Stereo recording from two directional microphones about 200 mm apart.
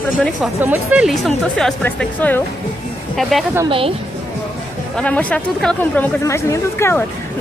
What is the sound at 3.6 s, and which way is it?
Speech, 25° right (ahead or behind).